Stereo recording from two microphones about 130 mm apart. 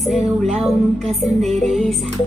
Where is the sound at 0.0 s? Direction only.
Centre (ahead or behind).